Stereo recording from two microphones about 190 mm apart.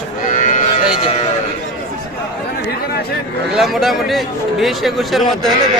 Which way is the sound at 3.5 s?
Centre (ahead or behind).